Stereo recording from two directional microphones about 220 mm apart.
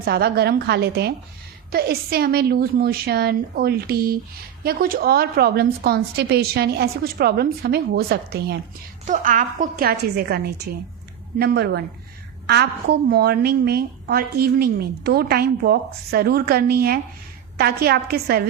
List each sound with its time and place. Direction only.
0.0 s a woman's voice: 45° right (ahead or behind)
9.0 s a woman's voice: 35° right (ahead or behind)